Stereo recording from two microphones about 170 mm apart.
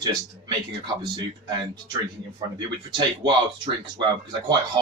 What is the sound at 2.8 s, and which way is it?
Speech, 30° right (ahead or behind).